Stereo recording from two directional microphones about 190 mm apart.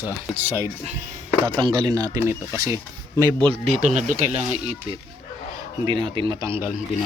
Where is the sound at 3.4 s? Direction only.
30° right (ahead or behind).